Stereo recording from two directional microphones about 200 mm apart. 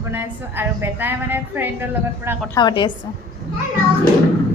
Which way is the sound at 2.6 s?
20° left (ahead or behind).